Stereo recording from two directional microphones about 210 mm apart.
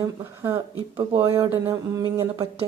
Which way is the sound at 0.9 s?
25° right (ahead or behind).